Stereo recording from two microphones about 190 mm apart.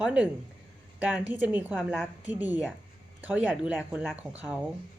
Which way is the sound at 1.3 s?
10° right (ahead or behind).